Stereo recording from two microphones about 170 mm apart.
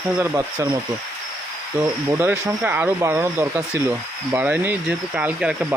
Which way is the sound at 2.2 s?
10° right (ahead or behind).